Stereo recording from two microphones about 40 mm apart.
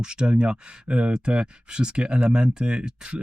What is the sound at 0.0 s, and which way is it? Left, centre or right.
Speech, right.